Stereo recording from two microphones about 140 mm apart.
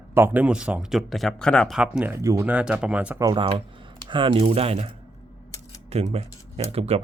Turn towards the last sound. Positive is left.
turn(degrees=-45)  # may be behind; listen again after turning